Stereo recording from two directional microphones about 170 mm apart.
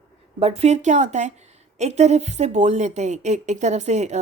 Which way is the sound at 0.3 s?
35° right (ahead or behind).